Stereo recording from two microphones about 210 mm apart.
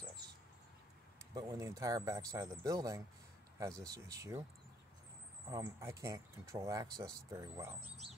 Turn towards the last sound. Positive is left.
turn(degrees=-15)  # may be behind; listen again after turning